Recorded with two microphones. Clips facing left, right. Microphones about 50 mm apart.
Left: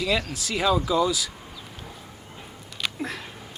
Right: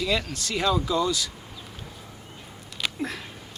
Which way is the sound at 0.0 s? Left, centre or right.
Centre.